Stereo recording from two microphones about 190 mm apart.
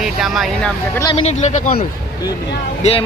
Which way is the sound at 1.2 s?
40° left (ahead or behind).